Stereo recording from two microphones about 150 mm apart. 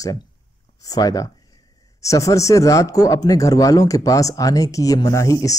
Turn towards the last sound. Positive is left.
turn(degrees=20)  # may be behind; listen again after turning